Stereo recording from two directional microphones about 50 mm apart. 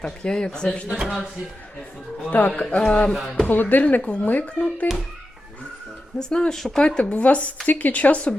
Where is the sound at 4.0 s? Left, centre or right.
Left.